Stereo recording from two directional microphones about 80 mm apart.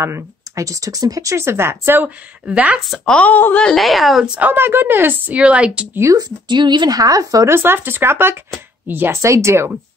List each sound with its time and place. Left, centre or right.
0.0 s speech: right; by 2.8 s centre
3.2 s speech: left
3.5 s speech: centre
4.4 s a woman's voice: right
5.4 s speech: centre
6.1 s speech: right
6.9 s speech: right
7.5 s a woman's voice: right